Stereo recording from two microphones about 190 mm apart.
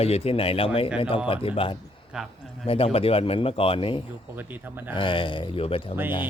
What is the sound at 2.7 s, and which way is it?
Speech, 30° left (ahead or behind).